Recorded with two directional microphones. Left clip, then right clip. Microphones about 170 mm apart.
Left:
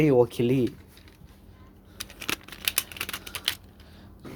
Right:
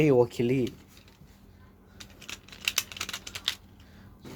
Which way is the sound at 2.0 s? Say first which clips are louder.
Left 11 dB; 80° left.